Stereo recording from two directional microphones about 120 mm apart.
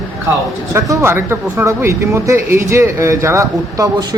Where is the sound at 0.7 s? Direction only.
25° right (ahead or behind).